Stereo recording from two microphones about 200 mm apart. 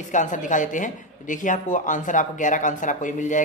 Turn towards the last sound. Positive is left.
turn(degrees=40)  # may be behind; listen again after turning